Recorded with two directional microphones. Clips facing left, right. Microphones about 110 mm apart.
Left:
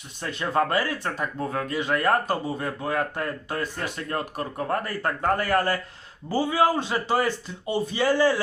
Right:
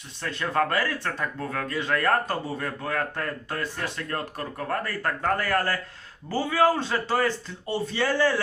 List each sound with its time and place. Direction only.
0.2 s speech: 20° left (ahead or behind)